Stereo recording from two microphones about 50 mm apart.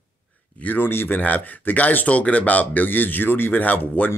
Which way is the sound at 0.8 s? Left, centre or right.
Left.